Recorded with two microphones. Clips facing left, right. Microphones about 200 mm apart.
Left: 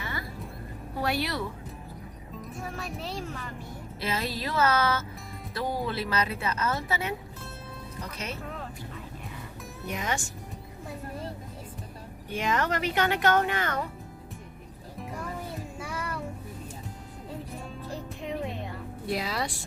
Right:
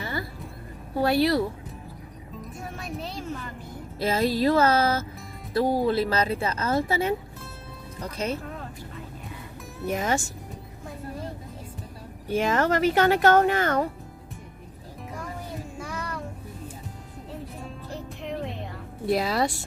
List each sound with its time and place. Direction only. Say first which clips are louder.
0.0 s music: right 5 dB; 30° right (ahead or behind)
0.9 s speech: right 8 dB; 35° right (ahead or behind)
2.6 s speech: right 2 dB; centre (ahead or behind)
4.0 s speech: right 9 dB; 45° right (ahead or behind)
5.5 s speech: right 8 dB; 40° right (ahead or behind)
6.1 s speech: right 4 dB; 30° right (ahead or behind)
9.9 s speech: right 6 dB; 40° right (ahead or behind)
12.3 s speech: right 5 dB; 40° right (ahead or behind)
15.8 s child singing: even; 5° left (ahead or behind)
19.1 s speech: right 7 dB; 40° right (ahead or behind)